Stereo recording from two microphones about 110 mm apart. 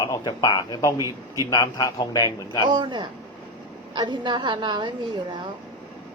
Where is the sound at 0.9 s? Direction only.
30° right (ahead or behind).